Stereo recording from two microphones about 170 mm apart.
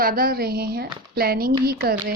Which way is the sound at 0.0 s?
60° right (ahead or behind).